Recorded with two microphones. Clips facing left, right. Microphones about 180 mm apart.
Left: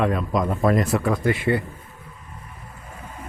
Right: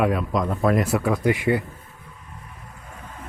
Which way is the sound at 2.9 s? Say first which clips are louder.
Left 2 dB; 10° left (ahead or behind).